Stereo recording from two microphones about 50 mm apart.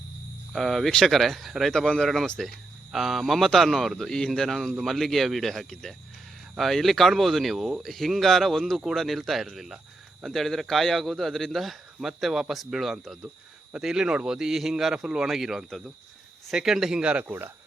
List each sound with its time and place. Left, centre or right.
0.5 s a man's voice: centre
1.7 s speech: centre
2.4 s a man's voice: centre; by 17.3 s right